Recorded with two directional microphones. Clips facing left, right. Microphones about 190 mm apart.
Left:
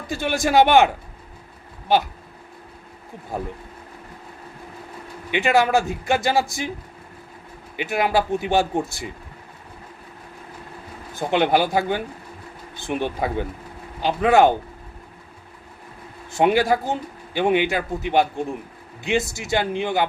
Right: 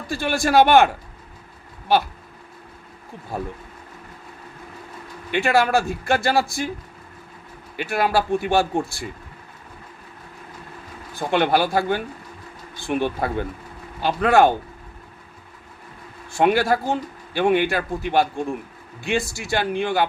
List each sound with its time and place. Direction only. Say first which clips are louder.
0.1 s a man's voice: even; 20° left (ahead or behind)
1.9 s a man's voice: even; 20° left (ahead or behind)
5.3 s a man's voice: even; 15° left (ahead or behind)
7.8 s a man's voice: even; 15° left (ahead or behind)
11.1 s a man's voice: even; 20° left (ahead or behind)
16.4 s a man's voice: even; 15° left (ahead or behind)